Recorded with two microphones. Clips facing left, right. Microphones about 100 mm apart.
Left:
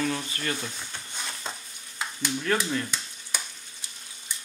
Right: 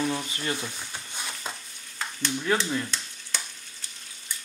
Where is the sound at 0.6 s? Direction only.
10° right (ahead or behind).